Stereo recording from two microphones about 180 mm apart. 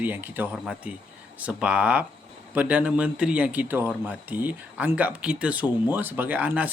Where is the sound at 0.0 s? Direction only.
10° right (ahead or behind).